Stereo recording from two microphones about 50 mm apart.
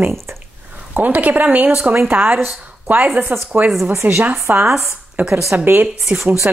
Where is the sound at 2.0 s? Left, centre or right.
Right.